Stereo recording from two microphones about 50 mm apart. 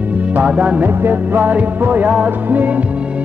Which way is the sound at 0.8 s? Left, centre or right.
Right.